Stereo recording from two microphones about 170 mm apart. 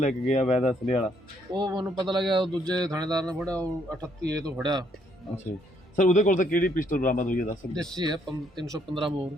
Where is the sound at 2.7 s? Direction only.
20° right (ahead or behind).